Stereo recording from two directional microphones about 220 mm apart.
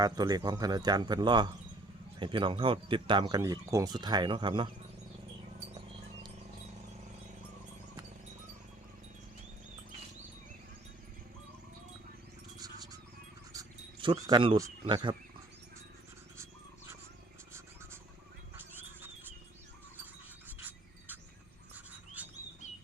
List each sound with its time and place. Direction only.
0.0 s speech: 20° right (ahead or behind)
12.5 s a sound: 15° right (ahead or behind)
13.5 s wild animals: 20° right (ahead or behind)
18.5 s wild animals: 10° right (ahead or behind)
20.6 s a sound: 10° right (ahead or behind)
22.2 s bird: 5° right (ahead or behind)